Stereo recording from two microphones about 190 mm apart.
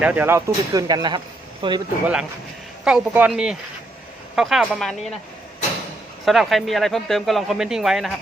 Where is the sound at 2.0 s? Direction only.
5° right (ahead or behind).